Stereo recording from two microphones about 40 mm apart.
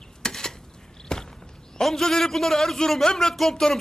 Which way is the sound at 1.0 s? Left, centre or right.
Centre.